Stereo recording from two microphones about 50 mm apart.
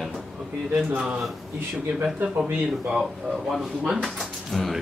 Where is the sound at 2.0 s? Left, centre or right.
Right.